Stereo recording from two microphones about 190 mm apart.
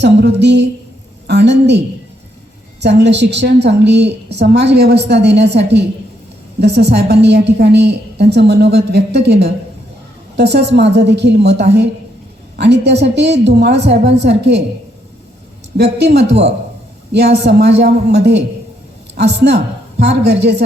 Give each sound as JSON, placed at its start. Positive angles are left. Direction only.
{"t": 0.0, "sound": "a woman's voice", "side_deg": -65}
{"t": 2.8, "sound": "a woman's voice", "side_deg": -65}
{"t": 15.8, "sound": "a woman's voice", "side_deg": -60}